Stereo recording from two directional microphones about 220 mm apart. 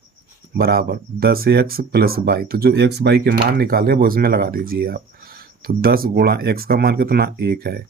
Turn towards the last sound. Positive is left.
turn(degrees=-45)  # may be behind; listen again after turning